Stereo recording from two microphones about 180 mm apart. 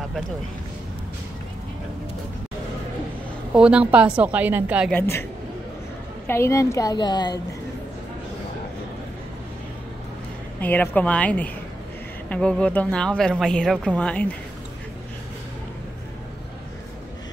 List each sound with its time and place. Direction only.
3.5 s a woman's voice: 5° right (ahead or behind)
4.9 s a woman's voice: 15° left (ahead or behind)
6.2 s a woman's voice: 15° left (ahead or behind)
10.6 s a woman's voice: 10° left (ahead or behind)